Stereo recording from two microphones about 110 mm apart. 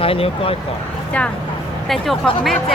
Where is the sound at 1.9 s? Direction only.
Centre (ahead or behind).